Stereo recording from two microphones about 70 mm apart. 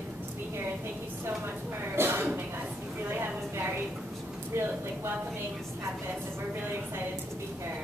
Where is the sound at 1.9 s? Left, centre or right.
Right.